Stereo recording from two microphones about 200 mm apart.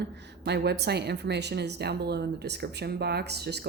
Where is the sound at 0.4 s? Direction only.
55° right (ahead or behind).